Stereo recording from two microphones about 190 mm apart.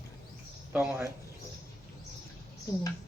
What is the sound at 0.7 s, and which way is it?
Speech, 5° right (ahead or behind).